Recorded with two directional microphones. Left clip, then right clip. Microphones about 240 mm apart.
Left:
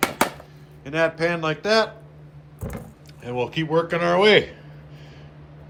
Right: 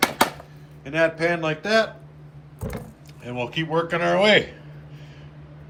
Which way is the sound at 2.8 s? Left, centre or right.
Centre.